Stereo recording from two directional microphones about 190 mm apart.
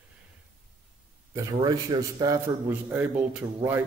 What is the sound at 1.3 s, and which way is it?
Speech, 20° right (ahead or behind).